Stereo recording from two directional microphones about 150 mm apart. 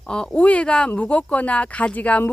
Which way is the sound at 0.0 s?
5° left (ahead or behind).